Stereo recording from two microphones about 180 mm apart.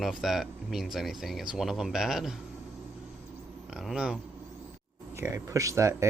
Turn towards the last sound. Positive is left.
turn(degrees=-15)  # may be behind; listen again after turning